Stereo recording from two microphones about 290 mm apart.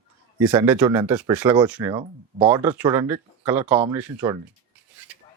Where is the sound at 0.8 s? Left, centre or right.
Centre.